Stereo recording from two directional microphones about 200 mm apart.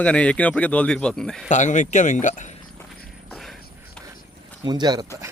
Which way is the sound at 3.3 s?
Centre (ahead or behind).